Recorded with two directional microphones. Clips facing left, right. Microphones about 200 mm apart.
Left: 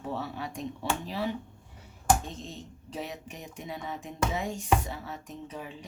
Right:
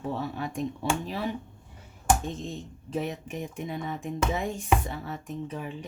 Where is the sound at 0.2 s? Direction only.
50° right (ahead or behind).